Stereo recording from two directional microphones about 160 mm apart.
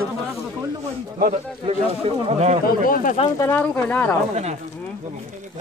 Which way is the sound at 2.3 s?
45° right (ahead or behind).